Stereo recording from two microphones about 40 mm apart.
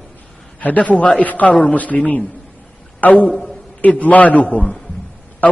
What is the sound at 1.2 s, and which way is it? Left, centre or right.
A man's voice, left.